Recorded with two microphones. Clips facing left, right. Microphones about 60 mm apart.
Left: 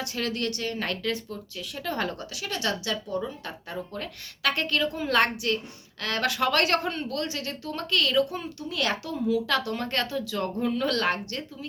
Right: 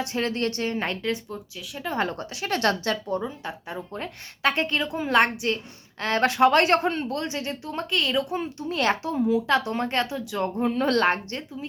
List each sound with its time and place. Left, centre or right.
0.0 s a woman's voice: right
3.2 s a woman's voice: right